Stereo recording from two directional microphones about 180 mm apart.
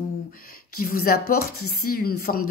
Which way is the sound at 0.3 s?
55° left (ahead or behind).